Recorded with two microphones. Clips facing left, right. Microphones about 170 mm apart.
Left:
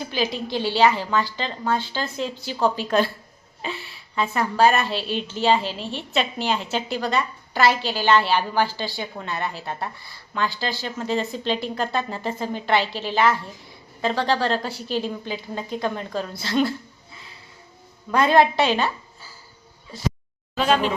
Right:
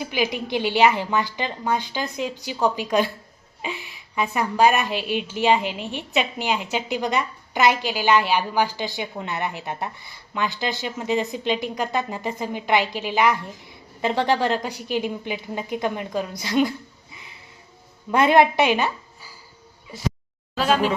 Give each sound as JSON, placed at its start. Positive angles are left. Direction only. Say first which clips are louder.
{"t": 0.0, "sound": "a woman's voice", "louder": "right 1 dB", "side_deg": -15}
{"t": 18.1, "sound": "a woman's voice", "louder": "right 1 dB", "side_deg": -20}